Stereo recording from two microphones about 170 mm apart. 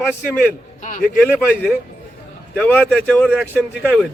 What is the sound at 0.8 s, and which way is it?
Speech, 50° left (ahead or behind).